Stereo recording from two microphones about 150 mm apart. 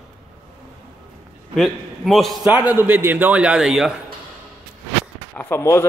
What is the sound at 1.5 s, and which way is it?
Speech, centre (ahead or behind).